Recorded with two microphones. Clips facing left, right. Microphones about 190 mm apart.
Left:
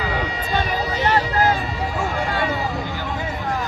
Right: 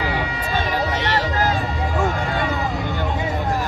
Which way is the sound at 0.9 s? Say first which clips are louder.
Left 2 dB; 70° right (ahead or behind).